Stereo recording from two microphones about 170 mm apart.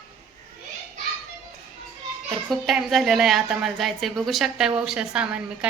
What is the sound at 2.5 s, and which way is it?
A woman's voice, centre (ahead or behind).